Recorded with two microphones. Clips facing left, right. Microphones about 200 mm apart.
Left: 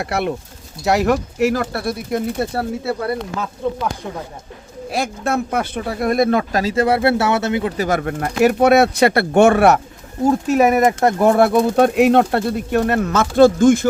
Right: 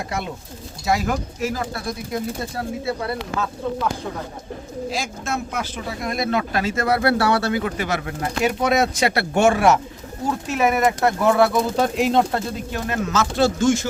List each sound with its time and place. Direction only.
0.0 s speech: 70° left (ahead or behind)
4.9 s speech: 60° left (ahead or behind); by 7.7 s 25° left (ahead or behind)
7.8 s speech: 50° left (ahead or behind)
10.2 s speech: 40° left (ahead or behind)